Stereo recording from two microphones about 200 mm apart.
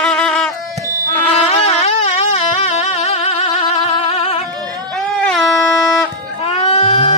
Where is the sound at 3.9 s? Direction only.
30° left (ahead or behind).